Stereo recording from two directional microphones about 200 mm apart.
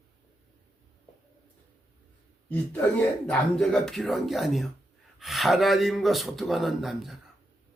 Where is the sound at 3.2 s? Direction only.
Centre (ahead or behind).